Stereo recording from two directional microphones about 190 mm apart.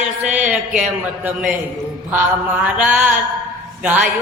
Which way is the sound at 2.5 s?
10° right (ahead or behind).